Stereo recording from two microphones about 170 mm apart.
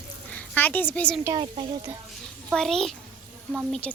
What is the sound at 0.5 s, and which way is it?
Speech, 10° left (ahead or behind).